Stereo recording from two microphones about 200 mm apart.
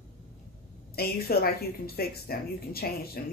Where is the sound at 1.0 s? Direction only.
50° left (ahead or behind).